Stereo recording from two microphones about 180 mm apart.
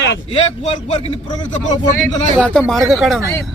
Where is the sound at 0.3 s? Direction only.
40° left (ahead or behind).